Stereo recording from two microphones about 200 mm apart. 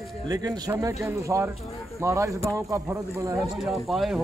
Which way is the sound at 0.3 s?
20° right (ahead or behind).